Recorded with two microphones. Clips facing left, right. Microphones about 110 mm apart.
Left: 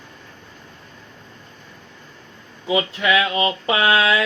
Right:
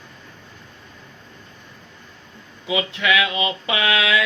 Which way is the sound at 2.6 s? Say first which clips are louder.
Left 2 dB; 35° left (ahead or behind).